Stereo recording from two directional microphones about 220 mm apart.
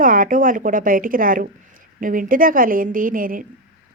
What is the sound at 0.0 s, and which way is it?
A woman's voice, 40° right (ahead or behind).